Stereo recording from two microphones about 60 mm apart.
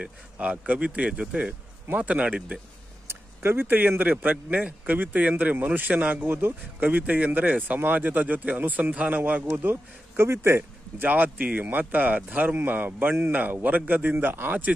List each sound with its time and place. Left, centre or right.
0.0 s speech: right
3.1 s a sound: right
4.0 s speech: right
11.0 s a man's voice: right